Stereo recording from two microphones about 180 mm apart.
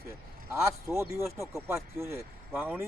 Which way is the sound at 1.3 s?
15° right (ahead or behind).